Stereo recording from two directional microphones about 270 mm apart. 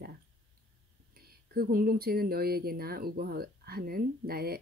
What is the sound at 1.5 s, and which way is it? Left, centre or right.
Speech, right.